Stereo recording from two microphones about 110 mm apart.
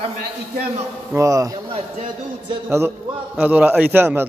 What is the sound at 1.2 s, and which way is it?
Speech, 30° right (ahead or behind).